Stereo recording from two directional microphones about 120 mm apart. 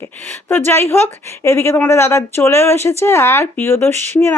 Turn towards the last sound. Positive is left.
turn(degrees=20)  # may be behind; listen again after turning